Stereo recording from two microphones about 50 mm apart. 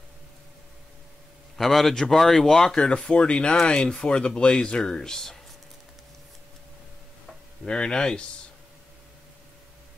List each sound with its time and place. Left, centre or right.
1.6 s speech: centre
7.6 s speech: centre